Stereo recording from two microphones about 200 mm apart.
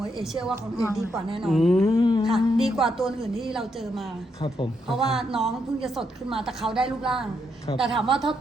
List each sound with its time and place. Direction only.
0.0 s a woman's voice: centre (ahead or behind)
1.9 s music: 25° left (ahead or behind)
2.2 s a woman's voice: centre (ahead or behind)